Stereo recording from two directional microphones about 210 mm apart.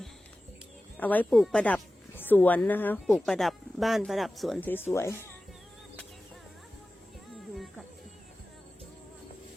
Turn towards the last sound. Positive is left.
turn(degrees=0)  # may be behind; listen again after turning